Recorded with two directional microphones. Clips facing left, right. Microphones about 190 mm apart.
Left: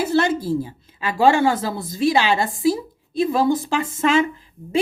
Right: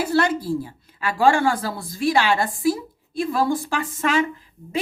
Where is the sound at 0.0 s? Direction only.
25° left (ahead or behind).